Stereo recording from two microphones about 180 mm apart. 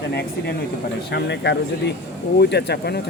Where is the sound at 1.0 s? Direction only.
70° left (ahead or behind).